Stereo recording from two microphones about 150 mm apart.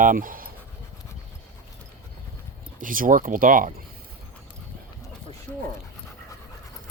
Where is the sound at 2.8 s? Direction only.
65° right (ahead or behind).